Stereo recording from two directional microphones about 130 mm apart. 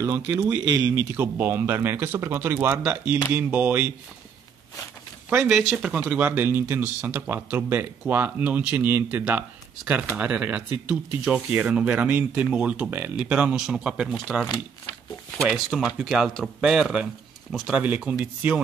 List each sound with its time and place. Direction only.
0.0 s a man's voice: 25° right (ahead or behind)
1.1 s speech: 15° right (ahead or behind)
5.3 s speech: 5° right (ahead or behind)